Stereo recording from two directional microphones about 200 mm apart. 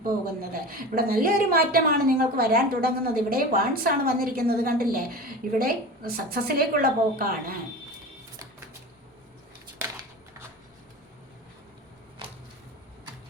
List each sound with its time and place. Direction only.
0.5 s a woman's voice: 50° right (ahead or behind)